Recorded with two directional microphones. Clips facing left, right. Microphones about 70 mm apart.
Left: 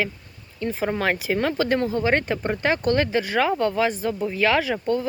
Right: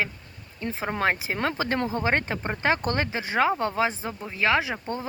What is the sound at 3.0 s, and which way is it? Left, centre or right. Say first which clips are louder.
Speech: left 2 dB; right.